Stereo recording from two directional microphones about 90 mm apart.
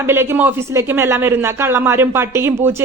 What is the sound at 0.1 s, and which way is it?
Speech, 25° right (ahead or behind).